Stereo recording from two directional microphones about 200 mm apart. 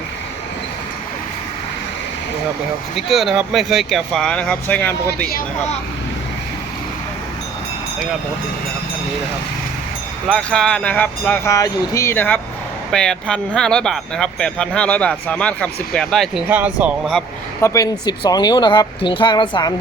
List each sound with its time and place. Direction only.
2.9 s speech: centre (ahead or behind)
10.2 s speech: 5° left (ahead or behind)
17.6 s speech: 20° left (ahead or behind)